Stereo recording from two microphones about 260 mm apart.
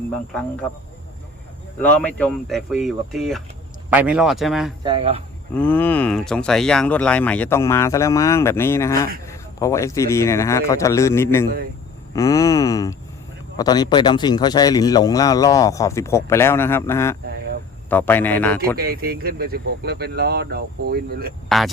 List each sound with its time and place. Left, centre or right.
0.1 s speech: centre
1.8 s speech: centre
4.8 s speech: centre
5.5 s speech: centre
18.8 s speech: right